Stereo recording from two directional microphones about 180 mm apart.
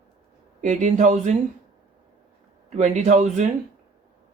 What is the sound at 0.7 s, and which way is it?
Speech, 45° right (ahead or behind).